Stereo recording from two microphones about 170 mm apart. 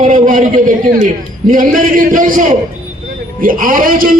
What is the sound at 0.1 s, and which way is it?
A man's voice, 50° right (ahead or behind).